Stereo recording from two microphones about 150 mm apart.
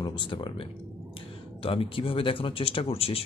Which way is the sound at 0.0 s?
30° left (ahead or behind).